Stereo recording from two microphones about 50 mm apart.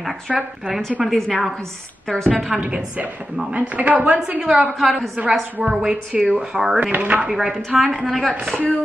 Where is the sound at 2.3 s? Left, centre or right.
Right.